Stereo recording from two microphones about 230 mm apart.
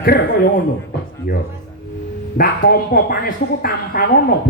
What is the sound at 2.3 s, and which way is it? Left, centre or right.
A man's voice, left.